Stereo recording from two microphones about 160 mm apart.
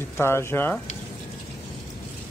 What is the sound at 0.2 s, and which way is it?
Speech, 15° left (ahead or behind).